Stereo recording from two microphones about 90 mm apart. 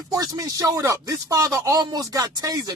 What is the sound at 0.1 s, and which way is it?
Speech, 45° right (ahead or behind).